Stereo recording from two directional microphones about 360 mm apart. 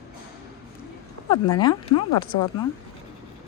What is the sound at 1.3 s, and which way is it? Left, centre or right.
Speech, centre.